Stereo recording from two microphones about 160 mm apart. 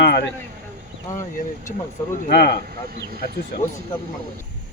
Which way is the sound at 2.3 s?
80° left.